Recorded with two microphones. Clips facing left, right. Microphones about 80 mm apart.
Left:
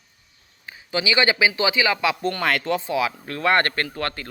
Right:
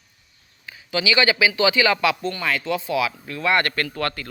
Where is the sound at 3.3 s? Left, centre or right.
Left.